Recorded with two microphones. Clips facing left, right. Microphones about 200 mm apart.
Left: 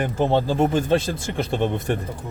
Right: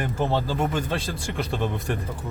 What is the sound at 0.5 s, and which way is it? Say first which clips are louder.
Speech: left 7 dB; 30° left (ahead or behind).